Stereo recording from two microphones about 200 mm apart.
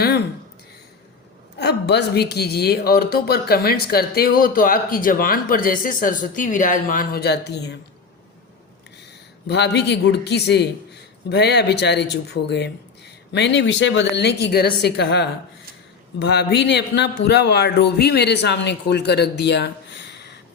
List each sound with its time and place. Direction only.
1.5 s speech: 55° left (ahead or behind)
9.5 s a man's voice: 60° left (ahead or behind)